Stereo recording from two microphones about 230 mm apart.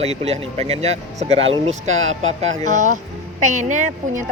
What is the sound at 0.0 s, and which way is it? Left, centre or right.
A woman's voice, right.